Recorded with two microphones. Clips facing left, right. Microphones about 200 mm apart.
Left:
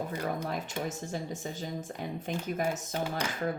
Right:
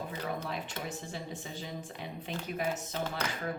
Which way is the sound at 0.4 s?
45° left (ahead or behind).